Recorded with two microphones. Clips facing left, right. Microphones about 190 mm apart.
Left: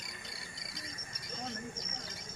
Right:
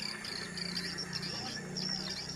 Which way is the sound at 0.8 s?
90° right.